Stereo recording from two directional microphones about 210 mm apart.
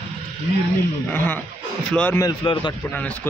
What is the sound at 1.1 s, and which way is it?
A man's voice, 10° left (ahead or behind).